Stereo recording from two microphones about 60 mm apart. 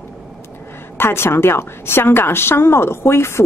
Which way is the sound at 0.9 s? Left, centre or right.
Left.